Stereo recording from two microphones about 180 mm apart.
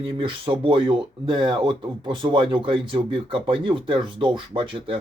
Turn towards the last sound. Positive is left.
turn(degrees=-30)  # may be behind; listen again after turning